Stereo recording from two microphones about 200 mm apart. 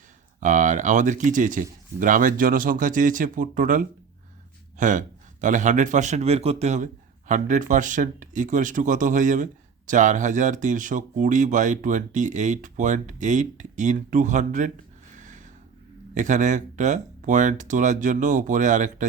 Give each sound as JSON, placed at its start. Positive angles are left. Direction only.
{"t": 0.3, "sound": "a man's voice", "side_deg": -40}
{"t": 15.1, "sound": "a sound", "side_deg": -40}
{"t": 16.1, "sound": "a man's voice", "side_deg": -40}